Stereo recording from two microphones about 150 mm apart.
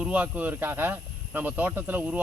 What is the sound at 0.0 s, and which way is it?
Speech, 10° right (ahead or behind).